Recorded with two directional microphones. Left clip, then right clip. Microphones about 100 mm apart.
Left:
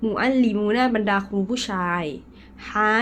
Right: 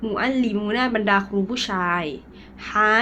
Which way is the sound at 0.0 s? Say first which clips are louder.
Left 2 dB; 50° left (ahead or behind).